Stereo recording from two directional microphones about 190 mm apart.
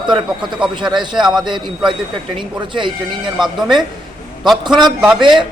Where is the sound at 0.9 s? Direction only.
25° right (ahead or behind).